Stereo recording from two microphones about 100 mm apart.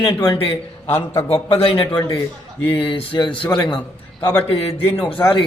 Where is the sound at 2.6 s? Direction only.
60° left (ahead or behind).